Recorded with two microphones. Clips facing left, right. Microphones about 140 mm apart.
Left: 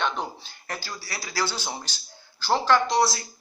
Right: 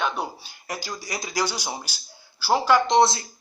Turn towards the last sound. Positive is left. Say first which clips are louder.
# right 4 dB
turn(degrees=-25)  # may be behind; listen again after turning